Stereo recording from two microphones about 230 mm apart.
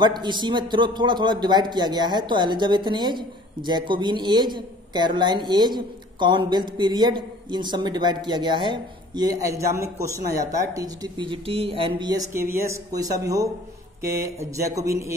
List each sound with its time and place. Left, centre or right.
0.0 s a man's voice: centre